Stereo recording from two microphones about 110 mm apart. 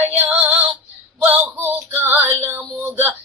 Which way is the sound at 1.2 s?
20° right (ahead or behind).